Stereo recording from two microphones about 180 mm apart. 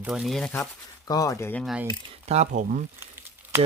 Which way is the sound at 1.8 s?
40° right (ahead or behind).